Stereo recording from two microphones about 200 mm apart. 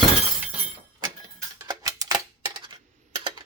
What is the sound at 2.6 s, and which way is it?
Typing, 25° right (ahead or behind).